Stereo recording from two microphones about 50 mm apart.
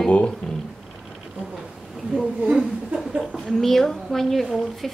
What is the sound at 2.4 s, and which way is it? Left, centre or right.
Speech, centre.